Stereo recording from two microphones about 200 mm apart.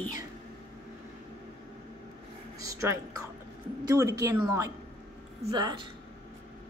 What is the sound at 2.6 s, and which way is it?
A woman's voice, 15° right (ahead or behind).